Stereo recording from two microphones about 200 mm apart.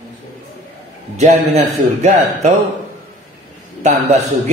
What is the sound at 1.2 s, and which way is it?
Speech, 30° right (ahead or behind).